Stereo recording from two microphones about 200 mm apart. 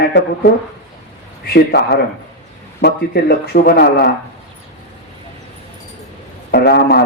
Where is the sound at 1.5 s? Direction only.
55° left (ahead or behind).